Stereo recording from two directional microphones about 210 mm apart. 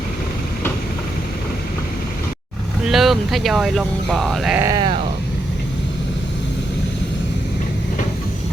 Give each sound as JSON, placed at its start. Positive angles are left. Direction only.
{"t": 2.8, "sound": "speech", "side_deg": 0}
{"t": 4.6, "sound": "speech", "side_deg": -20}